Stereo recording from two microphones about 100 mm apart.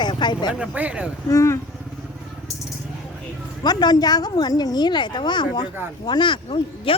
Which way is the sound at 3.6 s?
45° left (ahead or behind).